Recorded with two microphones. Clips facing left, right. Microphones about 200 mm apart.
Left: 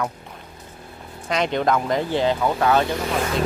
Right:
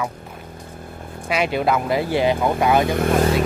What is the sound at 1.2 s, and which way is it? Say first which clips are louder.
Speech: right 1 dB; 10° right (ahead or behind).